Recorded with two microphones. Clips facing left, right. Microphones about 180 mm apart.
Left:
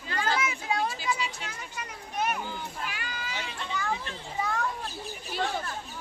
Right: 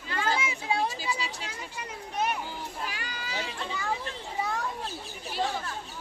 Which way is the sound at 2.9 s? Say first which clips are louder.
Even; 35° right (ahead or behind).